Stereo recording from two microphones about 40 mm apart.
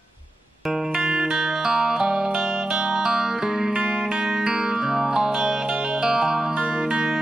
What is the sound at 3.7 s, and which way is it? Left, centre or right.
Music, right.